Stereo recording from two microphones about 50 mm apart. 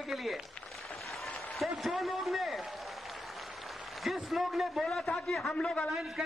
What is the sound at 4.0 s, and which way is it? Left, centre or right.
A man's voice, centre.